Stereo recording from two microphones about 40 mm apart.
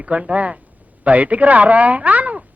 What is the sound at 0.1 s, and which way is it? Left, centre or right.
A man's voice, right.